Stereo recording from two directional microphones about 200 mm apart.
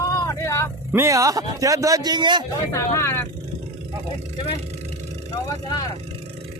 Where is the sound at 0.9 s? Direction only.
15° right (ahead or behind).